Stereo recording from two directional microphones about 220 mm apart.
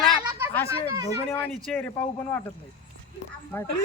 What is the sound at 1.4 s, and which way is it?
Speech, 5° left (ahead or behind).